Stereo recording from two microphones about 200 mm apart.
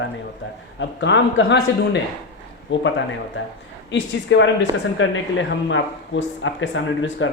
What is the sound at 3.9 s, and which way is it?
A woman's voice, 65° left (ahead or behind).